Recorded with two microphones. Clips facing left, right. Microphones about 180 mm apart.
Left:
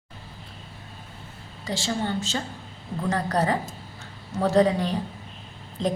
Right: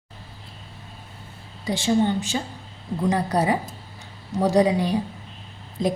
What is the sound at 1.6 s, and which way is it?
A woman's voice, 15° right (ahead or behind).